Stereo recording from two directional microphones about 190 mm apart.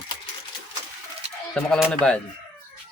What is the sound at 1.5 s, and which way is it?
Speech, 5° left (ahead or behind).